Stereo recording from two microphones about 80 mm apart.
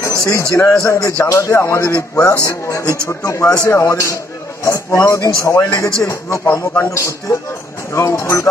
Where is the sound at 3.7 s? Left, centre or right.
Left.